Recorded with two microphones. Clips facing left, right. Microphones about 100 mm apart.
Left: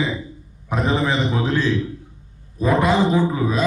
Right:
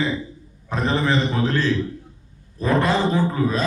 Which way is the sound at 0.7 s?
15° left (ahead or behind).